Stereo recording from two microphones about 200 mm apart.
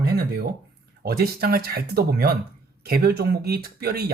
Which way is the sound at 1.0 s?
50° right (ahead or behind).